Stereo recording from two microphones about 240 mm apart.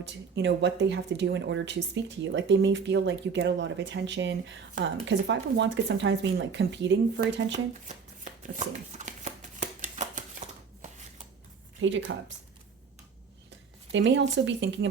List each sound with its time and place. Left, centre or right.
0.0 s speech: right
7.9 s shuffling cards: right
11.8 s speech: right
13.9 s speech: right